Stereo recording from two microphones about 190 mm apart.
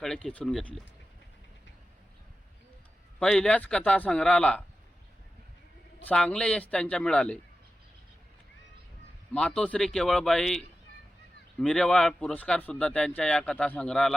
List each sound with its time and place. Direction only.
0.0 s speech: centre (ahead or behind)
3.2 s speech: 5° left (ahead or behind)
6.1 s speech: 5° left (ahead or behind)
9.3 s speech: 5° left (ahead or behind)
11.6 s speech: 5° left (ahead or behind)